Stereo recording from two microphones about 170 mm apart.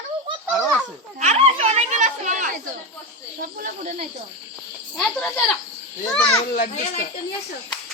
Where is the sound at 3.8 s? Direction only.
45° right (ahead or behind).